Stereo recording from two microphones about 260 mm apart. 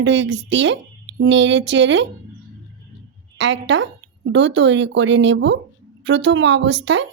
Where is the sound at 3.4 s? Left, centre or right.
Right.